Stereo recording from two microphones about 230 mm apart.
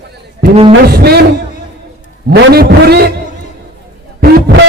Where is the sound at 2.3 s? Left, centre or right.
Right.